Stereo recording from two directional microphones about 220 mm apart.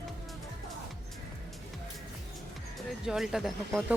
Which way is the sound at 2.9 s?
Centre (ahead or behind).